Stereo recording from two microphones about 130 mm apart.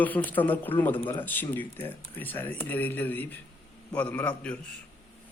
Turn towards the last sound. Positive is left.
turn(degrees=10)  # may be behind; listen again after turning